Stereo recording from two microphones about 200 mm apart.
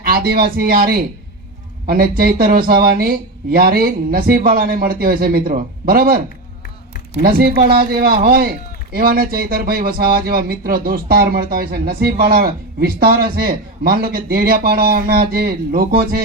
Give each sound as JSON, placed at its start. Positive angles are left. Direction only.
{"t": 0.0, "sound": "speech", "side_deg": -50}